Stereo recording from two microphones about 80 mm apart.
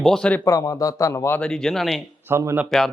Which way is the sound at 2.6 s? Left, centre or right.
Centre.